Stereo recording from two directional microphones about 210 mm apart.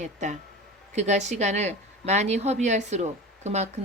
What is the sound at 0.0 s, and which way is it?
A woman's voice, 35° right (ahead or behind).